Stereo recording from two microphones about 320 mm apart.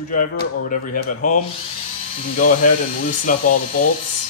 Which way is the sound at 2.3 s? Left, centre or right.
Left.